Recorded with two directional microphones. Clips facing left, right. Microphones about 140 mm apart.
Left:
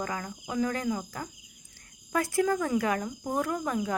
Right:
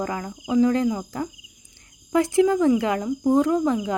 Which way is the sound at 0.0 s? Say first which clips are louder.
Right 6 dB; 30° right (ahead or behind).